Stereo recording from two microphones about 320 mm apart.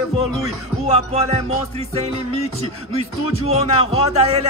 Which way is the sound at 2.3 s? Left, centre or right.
Centre.